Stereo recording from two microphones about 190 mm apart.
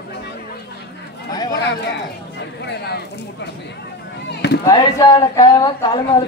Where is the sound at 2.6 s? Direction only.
60° left (ahead or behind).